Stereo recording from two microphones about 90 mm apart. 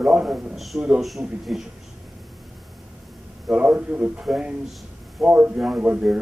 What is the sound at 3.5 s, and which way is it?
A man's voice, 15° right (ahead or behind).